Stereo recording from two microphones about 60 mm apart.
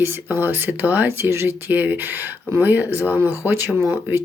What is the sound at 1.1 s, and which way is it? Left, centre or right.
Speech, right.